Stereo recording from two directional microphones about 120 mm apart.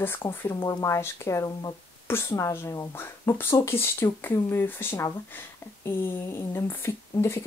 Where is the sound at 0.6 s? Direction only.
30° left (ahead or behind).